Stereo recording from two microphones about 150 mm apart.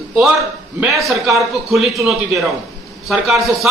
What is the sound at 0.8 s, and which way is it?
A man's voice, centre (ahead or behind).